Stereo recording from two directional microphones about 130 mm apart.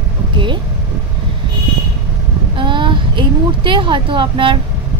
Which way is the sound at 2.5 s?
40° right (ahead or behind).